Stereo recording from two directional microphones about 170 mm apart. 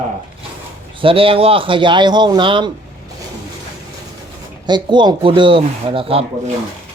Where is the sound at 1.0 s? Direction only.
30° right (ahead or behind).